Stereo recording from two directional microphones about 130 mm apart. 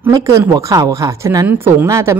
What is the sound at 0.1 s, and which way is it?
Speech, 25° right (ahead or behind).